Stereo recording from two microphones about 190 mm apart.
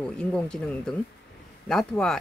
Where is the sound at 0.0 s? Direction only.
5° left (ahead or behind).